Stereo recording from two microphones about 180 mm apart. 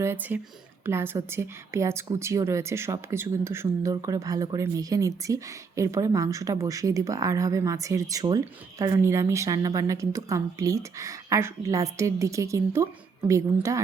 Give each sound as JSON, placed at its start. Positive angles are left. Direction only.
{"t": 0.0, "sound": "a woman's voice", "side_deg": -10}